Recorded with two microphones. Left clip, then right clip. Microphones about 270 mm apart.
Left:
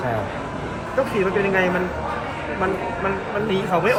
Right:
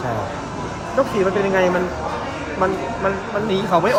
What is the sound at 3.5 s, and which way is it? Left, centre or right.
Speech, right.